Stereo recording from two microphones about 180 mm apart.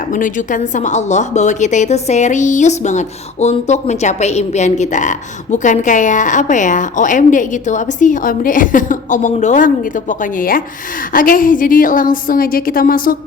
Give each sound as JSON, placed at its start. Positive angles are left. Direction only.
{"t": 0.1, "sound": "a woman's voice", "side_deg": 45}